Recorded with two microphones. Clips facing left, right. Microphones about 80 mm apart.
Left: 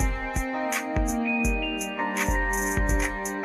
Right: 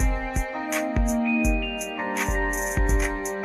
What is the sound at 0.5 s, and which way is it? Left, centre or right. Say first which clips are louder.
Music: right 2 dB; centre.